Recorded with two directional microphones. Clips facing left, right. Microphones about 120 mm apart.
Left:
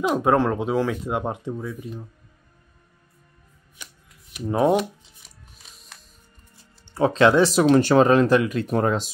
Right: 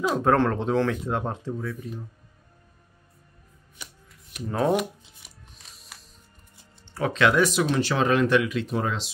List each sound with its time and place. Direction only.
0.1 s speech: 10° left (ahead or behind)
3.8 s shuffling cards: centre (ahead or behind)
6.9 s speech: 30° left (ahead or behind)
7.6 s speech: 45° left (ahead or behind)